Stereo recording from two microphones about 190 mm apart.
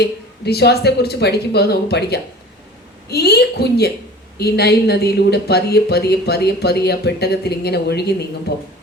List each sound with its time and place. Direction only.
0.0 s speech: 60° left (ahead or behind)